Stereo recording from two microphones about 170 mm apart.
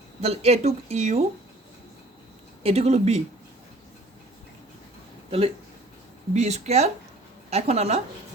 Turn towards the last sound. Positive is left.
turn(degrees=-40)  # may be behind; listen again after turning